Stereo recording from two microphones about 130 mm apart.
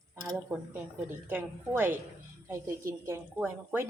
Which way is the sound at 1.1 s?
15° right (ahead or behind).